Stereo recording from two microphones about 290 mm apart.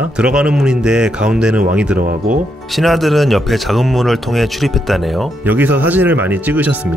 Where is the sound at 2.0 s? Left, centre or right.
Right.